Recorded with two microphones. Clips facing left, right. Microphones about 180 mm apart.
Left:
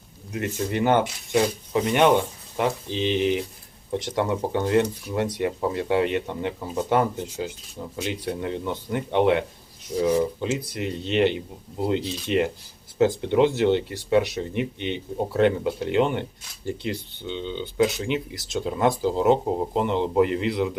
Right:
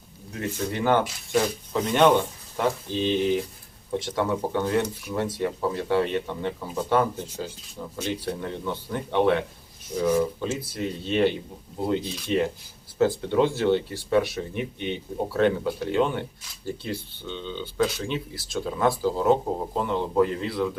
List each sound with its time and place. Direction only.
0.7 s speech: 20° left (ahead or behind)